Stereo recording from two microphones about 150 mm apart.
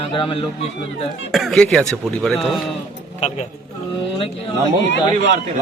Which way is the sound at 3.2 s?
45° left (ahead or behind).